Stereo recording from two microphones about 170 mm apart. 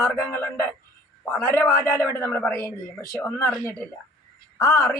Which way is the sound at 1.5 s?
15° left (ahead or behind).